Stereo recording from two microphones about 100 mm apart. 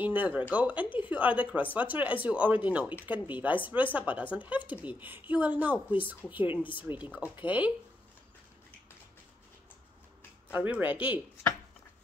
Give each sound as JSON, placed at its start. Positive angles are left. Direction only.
{"t": 0.0, "sound": "speech", "side_deg": -15}
{"t": 6.6, "sound": "a woman's voice", "side_deg": 55}
{"t": 6.9, "sound": "speech", "side_deg": -15}
{"t": 10.5, "sound": "speech", "side_deg": -15}